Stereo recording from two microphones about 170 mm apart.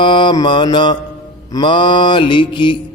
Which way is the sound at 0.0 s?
30° left (ahead or behind).